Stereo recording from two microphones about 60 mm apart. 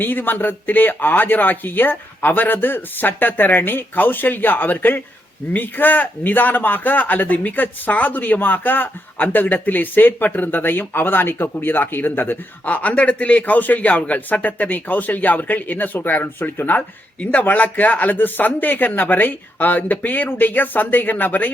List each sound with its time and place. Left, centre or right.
0.0 s a man's voice: left